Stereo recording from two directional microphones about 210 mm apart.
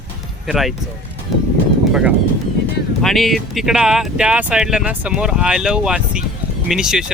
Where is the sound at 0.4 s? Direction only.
Centre (ahead or behind).